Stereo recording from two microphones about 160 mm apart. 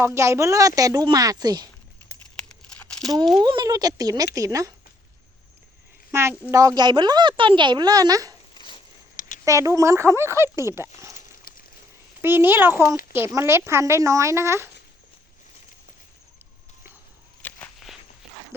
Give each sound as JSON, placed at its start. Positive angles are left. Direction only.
{"t": 0.0, "sound": "speech", "side_deg": -20}
{"t": 2.3, "sound": "crumpling", "side_deg": 5}
{"t": 3.4, "sound": "speech", "side_deg": -25}
{"t": 6.1, "sound": "speech", "side_deg": -15}
{"t": 8.5, "sound": "a sound", "side_deg": 30}
{"t": 9.4, "sound": "speech", "side_deg": -20}
{"t": 12.2, "sound": "speech", "side_deg": -15}
{"t": 17.4, "sound": "walk", "side_deg": 10}
{"t": 17.8, "sound": "walk", "side_deg": 0}